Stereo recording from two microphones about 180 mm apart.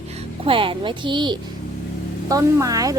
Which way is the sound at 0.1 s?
35° right (ahead or behind).